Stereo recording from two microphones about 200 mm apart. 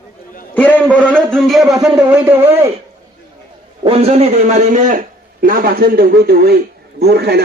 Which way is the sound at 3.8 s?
30° right (ahead or behind).